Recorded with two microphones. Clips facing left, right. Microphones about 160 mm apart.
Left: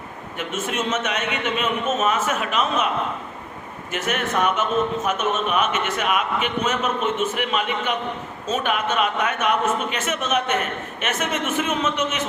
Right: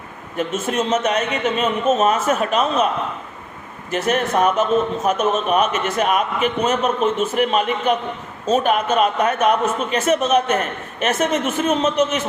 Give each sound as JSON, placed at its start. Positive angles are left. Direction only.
{"t": 0.3, "sound": "a man's voice", "side_deg": -35}
{"t": 3.9, "sound": "a man's voice", "side_deg": -35}